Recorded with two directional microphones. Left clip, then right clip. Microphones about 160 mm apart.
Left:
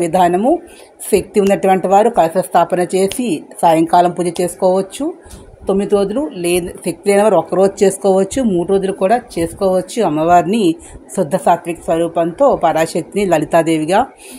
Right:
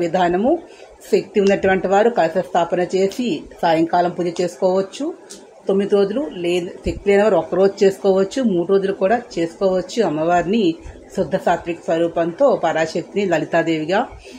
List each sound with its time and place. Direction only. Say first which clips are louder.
0.0 s speech: left 5 dB; 55° left (ahead or behind)